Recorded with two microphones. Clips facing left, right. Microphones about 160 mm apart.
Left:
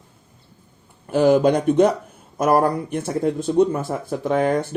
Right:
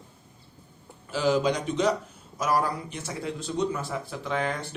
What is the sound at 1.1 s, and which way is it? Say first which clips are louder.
Speech: left 9 dB; 55° left (ahead or behind).